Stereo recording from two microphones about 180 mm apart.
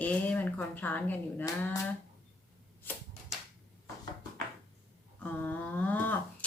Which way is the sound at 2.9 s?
10° left (ahead or behind).